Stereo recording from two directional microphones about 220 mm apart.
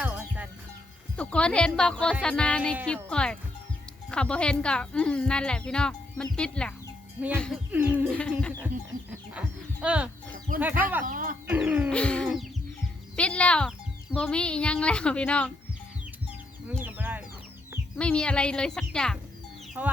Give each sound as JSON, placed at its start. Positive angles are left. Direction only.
{"t": 0.0, "sound": "music", "side_deg": -5}
{"t": 1.1, "sound": "a child's voice", "side_deg": 5}
{"t": 7.7, "sound": "a sound", "side_deg": -5}
{"t": 8.1, "sound": "a child's voice", "side_deg": 5}
{"t": 9.8, "sound": "a child's voice", "side_deg": -5}
{"t": 10.6, "sound": "a sound", "side_deg": -10}
{"t": 11.0, "sound": "speech", "side_deg": -40}
{"t": 11.4, "sound": "a sound", "side_deg": -5}
{"t": 11.9, "sound": "a child's voice", "side_deg": 5}
{"t": 16.6, "sound": "chicken", "side_deg": -10}
{"t": 17.9, "sound": "a child's voice", "side_deg": 5}
{"t": 19.8, "sound": "a sound", "side_deg": -5}